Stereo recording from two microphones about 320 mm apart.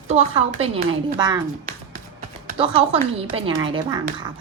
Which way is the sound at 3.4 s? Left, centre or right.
Centre.